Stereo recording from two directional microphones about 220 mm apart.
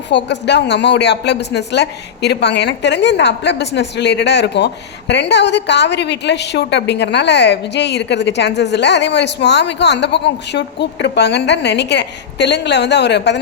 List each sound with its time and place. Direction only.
0.1 s a woman's voice: 50° left (ahead or behind)